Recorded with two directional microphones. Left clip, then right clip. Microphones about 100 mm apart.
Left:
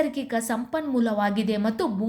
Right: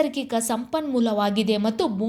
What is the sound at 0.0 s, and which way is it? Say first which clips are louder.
Speech: right 2 dB; 20° right (ahead or behind).